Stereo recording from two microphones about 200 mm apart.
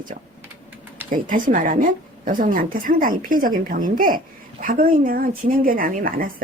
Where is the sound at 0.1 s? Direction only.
40° right (ahead or behind).